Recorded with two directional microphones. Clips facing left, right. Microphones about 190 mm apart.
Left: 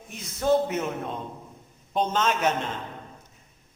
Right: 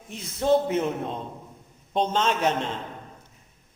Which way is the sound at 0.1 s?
30° right (ahead or behind).